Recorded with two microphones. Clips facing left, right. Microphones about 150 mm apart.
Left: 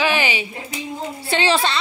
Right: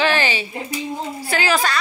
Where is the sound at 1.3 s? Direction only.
25° left (ahead or behind).